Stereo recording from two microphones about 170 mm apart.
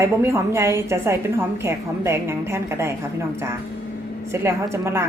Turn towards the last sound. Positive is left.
turn(degrees=-15)  # may be behind; listen again after turning